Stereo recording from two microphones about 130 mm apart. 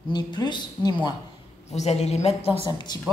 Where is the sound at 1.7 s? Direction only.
55° left (ahead or behind).